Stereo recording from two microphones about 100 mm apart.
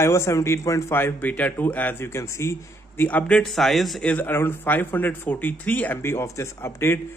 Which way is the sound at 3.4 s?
Centre (ahead or behind).